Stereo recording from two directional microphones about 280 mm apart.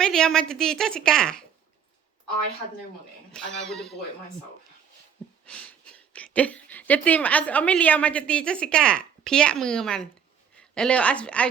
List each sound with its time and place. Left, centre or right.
0.0 s a woman's voice: centre
3.3 s a woman's voice: centre
5.5 s speech: centre